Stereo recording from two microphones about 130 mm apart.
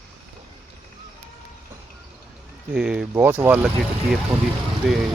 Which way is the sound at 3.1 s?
20° right (ahead or behind).